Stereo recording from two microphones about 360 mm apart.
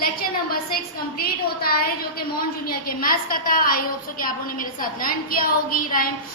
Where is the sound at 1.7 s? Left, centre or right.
Left.